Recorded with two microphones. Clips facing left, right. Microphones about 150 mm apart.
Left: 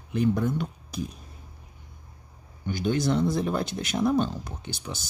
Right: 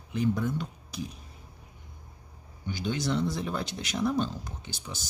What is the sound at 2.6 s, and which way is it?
Speech, 50° left (ahead or behind).